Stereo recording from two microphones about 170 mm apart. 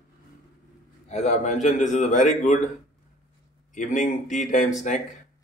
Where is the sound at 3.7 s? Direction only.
50° left (ahead or behind).